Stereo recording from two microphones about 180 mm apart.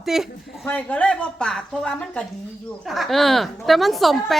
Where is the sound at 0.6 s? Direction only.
10° left (ahead or behind).